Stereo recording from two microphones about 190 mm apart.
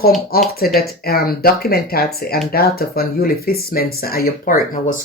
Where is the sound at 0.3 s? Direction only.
50° left (ahead or behind).